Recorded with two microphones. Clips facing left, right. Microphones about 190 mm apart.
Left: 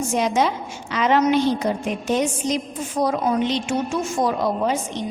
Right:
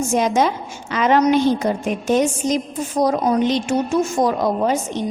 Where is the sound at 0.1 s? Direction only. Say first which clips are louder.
Right 2 dB; 45° right (ahead or behind).